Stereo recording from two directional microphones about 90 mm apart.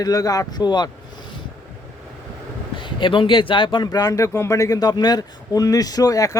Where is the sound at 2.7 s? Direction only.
65° left (ahead or behind).